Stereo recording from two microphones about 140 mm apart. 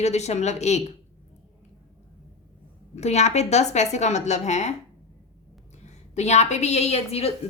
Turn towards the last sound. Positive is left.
turn(degrees=45)  # may be behind; listen again after turning